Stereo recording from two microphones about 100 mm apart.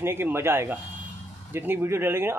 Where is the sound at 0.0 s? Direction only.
25° right (ahead or behind).